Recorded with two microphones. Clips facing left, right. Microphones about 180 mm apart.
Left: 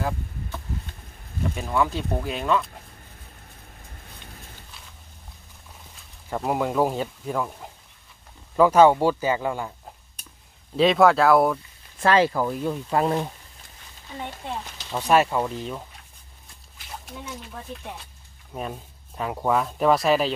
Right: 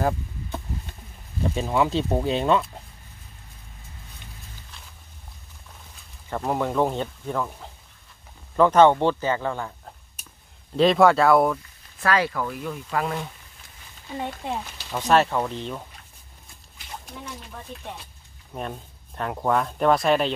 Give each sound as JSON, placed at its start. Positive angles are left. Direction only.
{"t": 1.5, "sound": "speech", "side_deg": -20}
{"t": 6.3, "sound": "speech", "side_deg": 5}
{"t": 12.0, "sound": "speech", "side_deg": 25}
{"t": 14.9, "sound": "speech", "side_deg": 10}
{"t": 18.5, "sound": "speech", "side_deg": 5}